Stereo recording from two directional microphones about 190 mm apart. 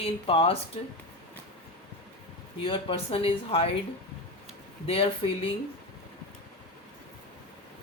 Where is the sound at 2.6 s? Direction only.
30° left (ahead or behind).